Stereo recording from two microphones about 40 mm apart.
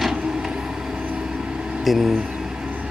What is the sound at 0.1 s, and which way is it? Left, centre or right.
Vehicle, centre.